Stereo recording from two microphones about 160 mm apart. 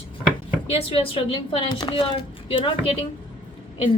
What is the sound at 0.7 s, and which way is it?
A woman's voice, 35° left (ahead or behind).